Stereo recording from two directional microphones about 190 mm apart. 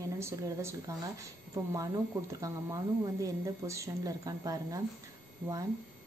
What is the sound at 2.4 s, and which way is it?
A woman's voice, 15° right (ahead or behind).